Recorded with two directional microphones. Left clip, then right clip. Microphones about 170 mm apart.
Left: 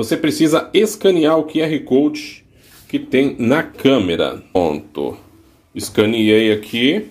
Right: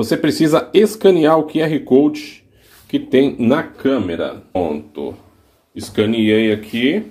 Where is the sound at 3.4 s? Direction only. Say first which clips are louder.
Even; 20° left (ahead or behind).